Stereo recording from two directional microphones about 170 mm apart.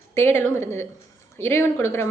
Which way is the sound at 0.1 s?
15° left (ahead or behind).